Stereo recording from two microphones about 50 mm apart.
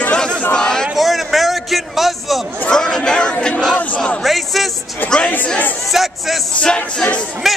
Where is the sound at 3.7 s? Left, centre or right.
Left.